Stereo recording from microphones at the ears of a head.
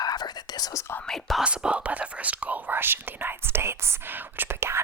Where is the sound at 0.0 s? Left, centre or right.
Left.